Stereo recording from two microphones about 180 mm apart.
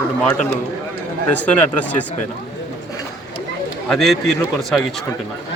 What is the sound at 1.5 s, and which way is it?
Speech, 10° left (ahead or behind).